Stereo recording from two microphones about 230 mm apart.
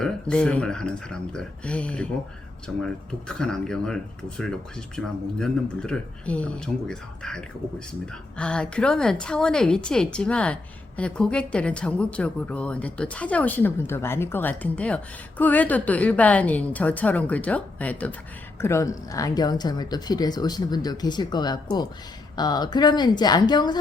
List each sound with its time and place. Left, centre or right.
0.0 s a woman's voice: centre
3.2 s a woman's voice: centre